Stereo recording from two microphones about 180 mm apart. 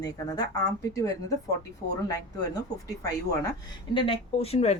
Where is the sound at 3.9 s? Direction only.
30° left (ahead or behind).